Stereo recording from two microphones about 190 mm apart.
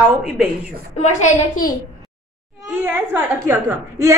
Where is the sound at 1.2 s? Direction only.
45° left (ahead or behind).